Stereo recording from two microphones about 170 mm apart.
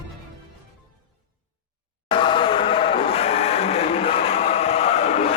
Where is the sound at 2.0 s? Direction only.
30° left (ahead or behind).